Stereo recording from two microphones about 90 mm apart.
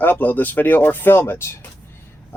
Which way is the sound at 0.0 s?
20° left (ahead or behind).